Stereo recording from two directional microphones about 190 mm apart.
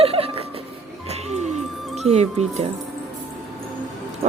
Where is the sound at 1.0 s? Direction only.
35° right (ahead or behind).